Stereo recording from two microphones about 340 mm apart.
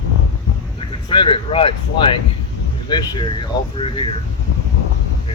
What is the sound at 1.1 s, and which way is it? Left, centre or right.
Speech, centre.